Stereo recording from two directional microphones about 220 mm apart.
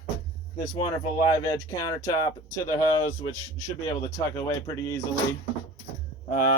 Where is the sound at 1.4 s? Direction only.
15° left (ahead or behind).